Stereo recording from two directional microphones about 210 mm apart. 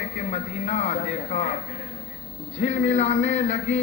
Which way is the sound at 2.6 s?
30° left (ahead or behind).